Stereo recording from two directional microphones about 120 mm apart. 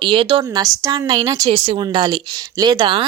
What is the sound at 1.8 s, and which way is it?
A woman's voice, 40° right (ahead or behind).